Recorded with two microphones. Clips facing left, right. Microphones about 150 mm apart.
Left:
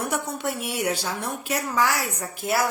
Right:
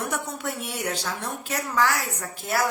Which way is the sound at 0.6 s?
20° left (ahead or behind).